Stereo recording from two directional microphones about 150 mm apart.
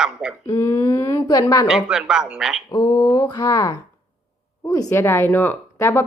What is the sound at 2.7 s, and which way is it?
Speech, 25° left (ahead or behind).